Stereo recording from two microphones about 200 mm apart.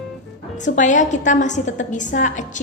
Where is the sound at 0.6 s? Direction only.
40° left (ahead or behind).